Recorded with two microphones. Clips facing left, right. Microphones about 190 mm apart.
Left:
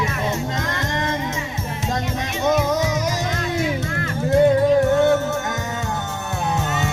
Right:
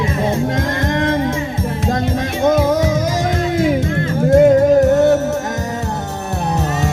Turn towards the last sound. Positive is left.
turn(degrees=-40)  # may be behind; listen again after turning